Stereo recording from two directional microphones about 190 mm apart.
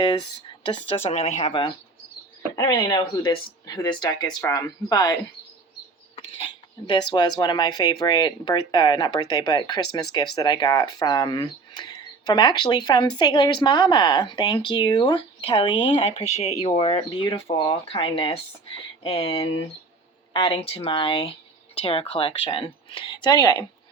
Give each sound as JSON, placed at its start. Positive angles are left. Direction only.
{"t": 0.6, "sound": "speech", "side_deg": 25}
{"t": 2.6, "sound": "speech", "side_deg": 20}
{"t": 6.1, "sound": "speech", "side_deg": 25}